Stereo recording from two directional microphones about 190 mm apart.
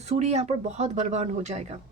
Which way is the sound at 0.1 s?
35° right (ahead or behind).